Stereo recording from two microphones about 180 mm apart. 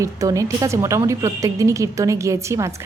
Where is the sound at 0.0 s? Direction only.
20° right (ahead or behind).